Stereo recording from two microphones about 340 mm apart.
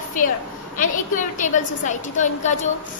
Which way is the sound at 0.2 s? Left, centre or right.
Left.